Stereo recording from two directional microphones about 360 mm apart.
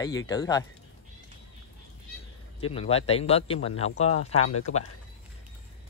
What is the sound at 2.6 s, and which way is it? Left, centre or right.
Speech, centre.